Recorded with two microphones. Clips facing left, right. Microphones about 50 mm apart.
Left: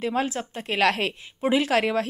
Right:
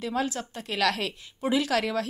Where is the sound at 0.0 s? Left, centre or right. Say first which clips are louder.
Left 3 dB; left.